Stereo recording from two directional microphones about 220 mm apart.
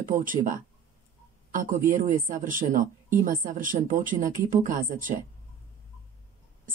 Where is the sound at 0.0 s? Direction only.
35° right (ahead or behind).